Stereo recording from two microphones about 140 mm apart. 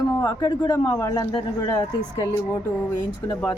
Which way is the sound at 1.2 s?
25° left (ahead or behind).